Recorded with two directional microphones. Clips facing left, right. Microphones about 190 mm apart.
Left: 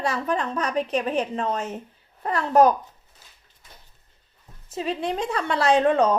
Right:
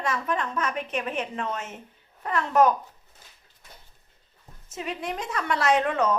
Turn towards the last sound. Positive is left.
turn(degrees=30)  # may be behind; listen again after turning